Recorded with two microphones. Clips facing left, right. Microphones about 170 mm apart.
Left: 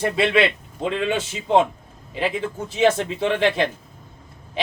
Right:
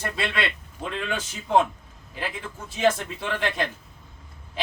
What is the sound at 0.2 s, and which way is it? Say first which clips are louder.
Speech: left 10 dB; 20° left (ahead or behind).